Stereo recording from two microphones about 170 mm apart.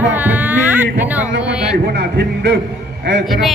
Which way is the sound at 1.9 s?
85° right.